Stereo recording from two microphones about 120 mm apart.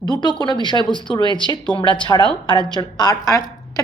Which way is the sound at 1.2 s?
40° right (ahead or behind).